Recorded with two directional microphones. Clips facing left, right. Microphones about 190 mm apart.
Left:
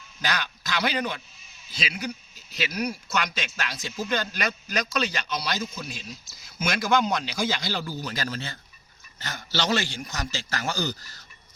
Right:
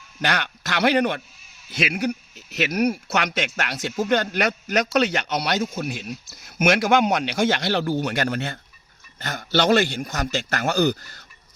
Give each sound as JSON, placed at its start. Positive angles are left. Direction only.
{"t": 0.2, "sound": "a man's voice", "side_deg": -65}